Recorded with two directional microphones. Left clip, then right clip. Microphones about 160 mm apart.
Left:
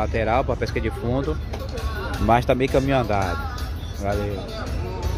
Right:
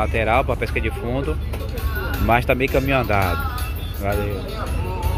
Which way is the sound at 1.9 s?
80° left.